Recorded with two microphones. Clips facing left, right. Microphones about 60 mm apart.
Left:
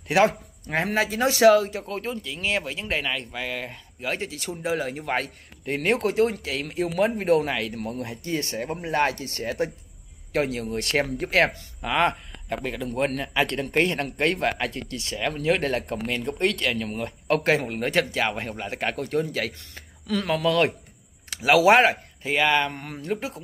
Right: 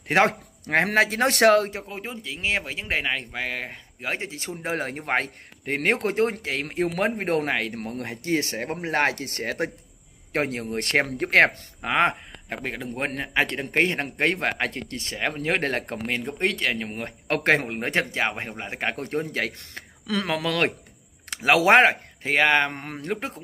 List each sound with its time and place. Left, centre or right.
0.3 s speech: right
1.7 s a man's voice: right
4.6 s speech: right
11.8 s a man's voice: right
16.3 s a man's voice: right
17.3 s speech: right
19.5 s speech: right